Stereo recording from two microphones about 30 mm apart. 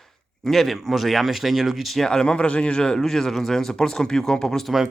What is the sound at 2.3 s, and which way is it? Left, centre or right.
Speech, left.